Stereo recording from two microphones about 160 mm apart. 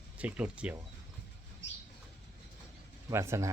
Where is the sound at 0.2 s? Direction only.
10° right (ahead or behind).